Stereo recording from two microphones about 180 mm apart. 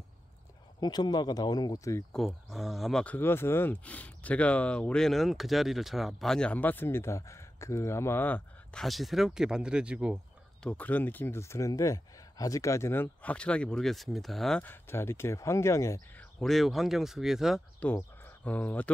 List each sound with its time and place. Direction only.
0.7 s speech: 25° left (ahead or behind)
2.1 s speech: centre (ahead or behind)
10.6 s speech: 5° left (ahead or behind)
16.3 s speech: centre (ahead or behind)
17.8 s speech: 10° left (ahead or behind)